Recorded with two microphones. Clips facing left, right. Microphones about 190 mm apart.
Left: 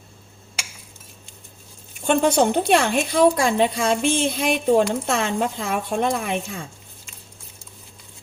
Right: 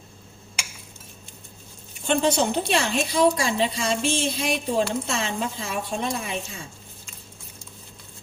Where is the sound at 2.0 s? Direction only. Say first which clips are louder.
Left 4 dB; 50° left (ahead or behind).